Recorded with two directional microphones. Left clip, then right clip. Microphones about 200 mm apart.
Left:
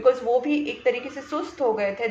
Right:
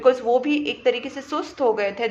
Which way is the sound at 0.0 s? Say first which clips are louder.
Right 2 dB; 45° right (ahead or behind).